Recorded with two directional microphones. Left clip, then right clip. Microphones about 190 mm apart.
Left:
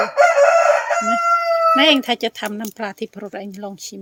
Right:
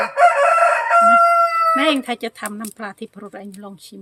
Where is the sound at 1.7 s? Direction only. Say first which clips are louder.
Left 3 dB; 30° left (ahead or behind).